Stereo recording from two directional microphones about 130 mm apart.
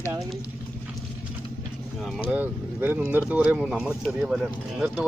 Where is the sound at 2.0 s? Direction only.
5° right (ahead or behind).